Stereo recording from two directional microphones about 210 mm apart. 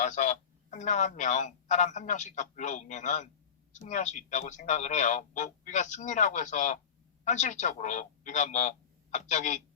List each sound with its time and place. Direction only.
0.0 s speech: 35° left (ahead or behind)